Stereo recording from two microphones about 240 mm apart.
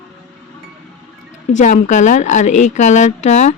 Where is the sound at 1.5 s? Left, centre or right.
Left.